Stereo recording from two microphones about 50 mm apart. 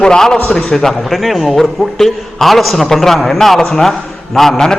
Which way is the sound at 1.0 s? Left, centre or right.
Centre.